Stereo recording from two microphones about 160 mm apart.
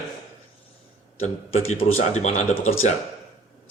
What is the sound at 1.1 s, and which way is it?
Speech, 40° left (ahead or behind).